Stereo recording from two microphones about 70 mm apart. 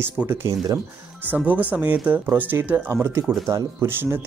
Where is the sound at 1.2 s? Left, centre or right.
Right.